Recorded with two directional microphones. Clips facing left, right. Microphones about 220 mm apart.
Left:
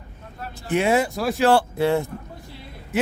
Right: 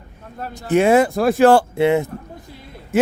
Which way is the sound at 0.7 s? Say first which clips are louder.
Right 6 dB; 50° right (ahead or behind).